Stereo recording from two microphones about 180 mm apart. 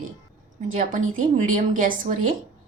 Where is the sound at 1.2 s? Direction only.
45° right (ahead or behind).